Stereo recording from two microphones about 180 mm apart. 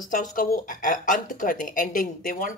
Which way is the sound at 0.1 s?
50° left (ahead or behind).